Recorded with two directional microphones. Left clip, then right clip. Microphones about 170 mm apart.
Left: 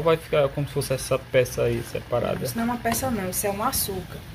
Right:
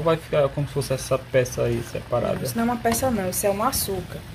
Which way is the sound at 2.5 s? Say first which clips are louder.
Right 3 dB; 60° right (ahead or behind).